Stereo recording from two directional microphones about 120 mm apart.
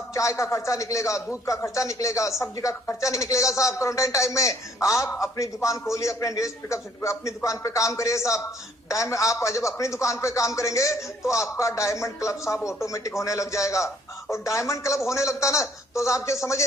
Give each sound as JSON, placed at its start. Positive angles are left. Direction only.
{"t": 0.1, "sound": "speech", "side_deg": 25}